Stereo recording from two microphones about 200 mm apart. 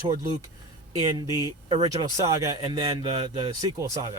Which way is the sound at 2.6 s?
30° right (ahead or behind).